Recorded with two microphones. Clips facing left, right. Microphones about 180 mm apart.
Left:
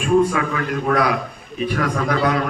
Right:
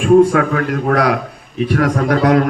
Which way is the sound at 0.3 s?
55° right (ahead or behind).